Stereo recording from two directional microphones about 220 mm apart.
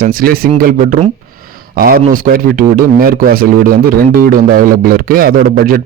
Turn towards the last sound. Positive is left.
turn(degrees=-40)  # may be behind; listen again after turning